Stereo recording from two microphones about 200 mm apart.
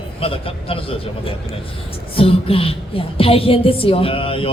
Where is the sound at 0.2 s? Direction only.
30° left (ahead or behind).